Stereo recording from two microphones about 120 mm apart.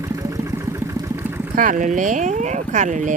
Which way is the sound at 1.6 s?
90° right.